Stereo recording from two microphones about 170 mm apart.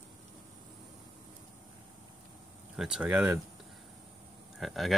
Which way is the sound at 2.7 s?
5° right (ahead or behind).